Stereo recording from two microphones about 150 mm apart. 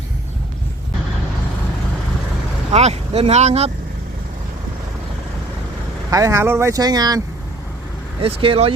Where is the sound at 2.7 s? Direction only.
45° right (ahead or behind).